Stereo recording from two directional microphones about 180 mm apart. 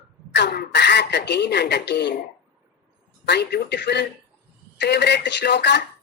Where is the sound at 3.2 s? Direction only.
65° left (ahead or behind).